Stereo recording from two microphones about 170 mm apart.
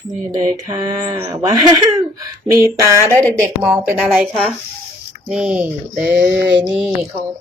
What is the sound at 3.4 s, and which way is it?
Speech, 10° right (ahead or behind).